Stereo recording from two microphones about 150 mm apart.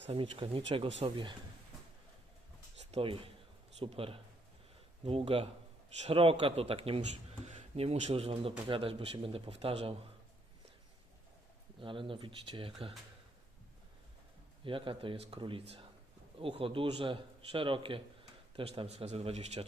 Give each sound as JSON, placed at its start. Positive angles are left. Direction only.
{"t": 0.1, "sound": "a man's voice", "side_deg": -35}
{"t": 2.9, "sound": "a man's voice", "side_deg": -35}
{"t": 11.8, "sound": "a man's voice", "side_deg": -35}
{"t": 14.6, "sound": "a man's voice", "side_deg": -35}